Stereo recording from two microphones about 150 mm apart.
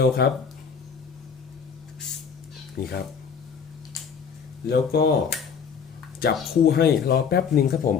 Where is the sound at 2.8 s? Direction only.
90° left.